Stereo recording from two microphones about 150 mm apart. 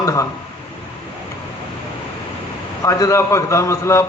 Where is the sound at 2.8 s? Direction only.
20° left (ahead or behind).